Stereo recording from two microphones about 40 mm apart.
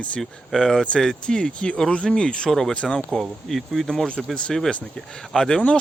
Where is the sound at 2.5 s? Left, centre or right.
Centre.